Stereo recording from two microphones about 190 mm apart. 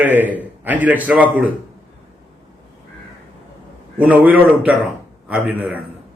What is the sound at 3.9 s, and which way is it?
A man's voice, 10° right (ahead or behind).